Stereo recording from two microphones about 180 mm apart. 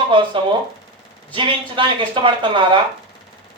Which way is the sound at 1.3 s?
30° right (ahead or behind).